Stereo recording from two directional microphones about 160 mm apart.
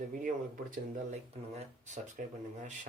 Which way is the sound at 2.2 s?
60° right (ahead or behind).